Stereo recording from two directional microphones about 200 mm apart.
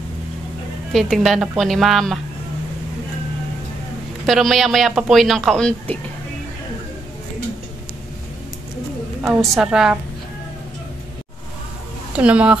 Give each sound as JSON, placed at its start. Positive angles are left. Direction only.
{"t": 0.9, "sound": "speech", "side_deg": 0}
{"t": 4.3, "sound": "speech", "side_deg": 0}
{"t": 9.2, "sound": "speech", "side_deg": -5}
{"t": 12.1, "sound": "speech", "side_deg": -5}